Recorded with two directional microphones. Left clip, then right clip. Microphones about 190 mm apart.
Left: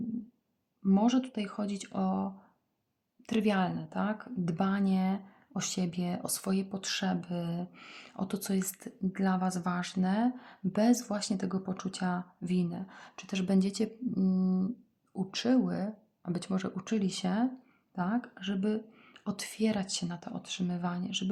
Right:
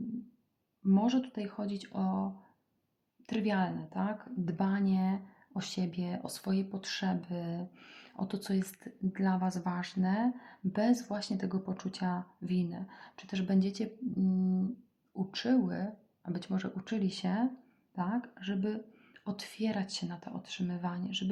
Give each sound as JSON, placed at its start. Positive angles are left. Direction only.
{"t": 0.9, "sound": "speech", "side_deg": 30}